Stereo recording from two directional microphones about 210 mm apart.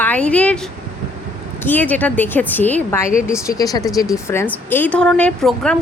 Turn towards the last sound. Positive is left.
turn(degrees=5)  # may be behind; listen again after turning